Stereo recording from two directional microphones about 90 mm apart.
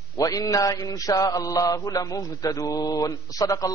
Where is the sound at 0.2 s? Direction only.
40° left (ahead or behind).